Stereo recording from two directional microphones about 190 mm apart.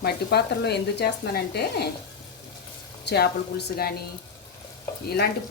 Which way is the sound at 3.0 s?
60° left (ahead or behind).